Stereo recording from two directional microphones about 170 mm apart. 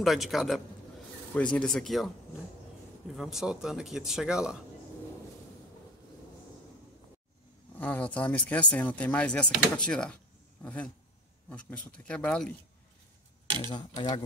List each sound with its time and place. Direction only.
0.0 s a man's voice: centre (ahead or behind)
3.2 s a man's voice: centre (ahead or behind)
7.7 s speech: 10° left (ahead or behind)
13.6 s speech: 25° left (ahead or behind)